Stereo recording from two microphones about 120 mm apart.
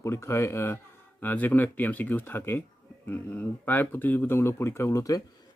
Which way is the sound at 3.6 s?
15° left (ahead or behind).